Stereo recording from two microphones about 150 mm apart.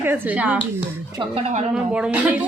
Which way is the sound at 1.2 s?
45° right (ahead or behind).